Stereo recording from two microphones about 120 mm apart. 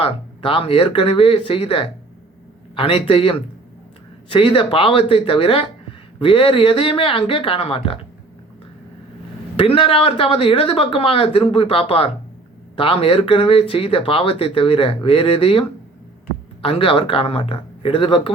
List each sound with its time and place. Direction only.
0.0 s speech: 50° left (ahead or behind)
9.6 s speech: 50° left (ahead or behind)
16.6 s speech: 50° left (ahead or behind)